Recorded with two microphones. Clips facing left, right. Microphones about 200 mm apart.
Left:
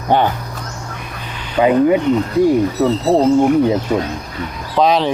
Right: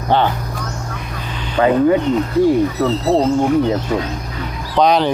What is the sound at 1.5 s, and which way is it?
Speech, 15° left (ahead or behind).